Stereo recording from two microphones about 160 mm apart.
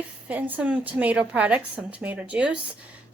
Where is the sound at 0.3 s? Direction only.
10° right (ahead or behind).